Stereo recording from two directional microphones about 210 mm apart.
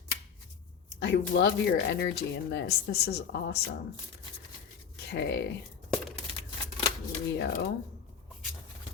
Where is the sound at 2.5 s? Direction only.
50° left (ahead or behind).